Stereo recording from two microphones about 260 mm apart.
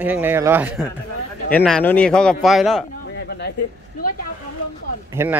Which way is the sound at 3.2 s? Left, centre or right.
Left.